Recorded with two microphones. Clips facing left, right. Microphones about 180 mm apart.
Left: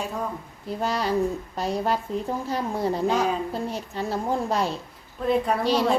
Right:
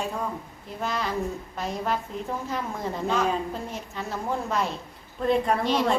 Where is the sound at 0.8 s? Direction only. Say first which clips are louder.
Left 4 dB; 35° left (ahead or behind).